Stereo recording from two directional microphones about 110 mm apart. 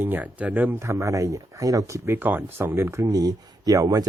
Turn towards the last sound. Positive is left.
turn(degrees=-35)  # may be behind; listen again after turning